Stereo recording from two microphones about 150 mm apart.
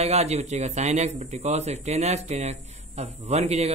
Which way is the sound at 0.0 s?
45° right (ahead or behind).